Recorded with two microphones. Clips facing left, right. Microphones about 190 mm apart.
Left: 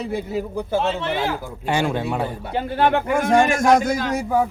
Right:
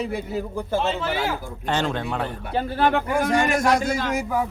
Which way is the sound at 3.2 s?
50° left (ahead or behind).